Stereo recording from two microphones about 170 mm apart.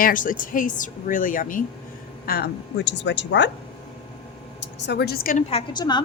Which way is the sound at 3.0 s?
90° left.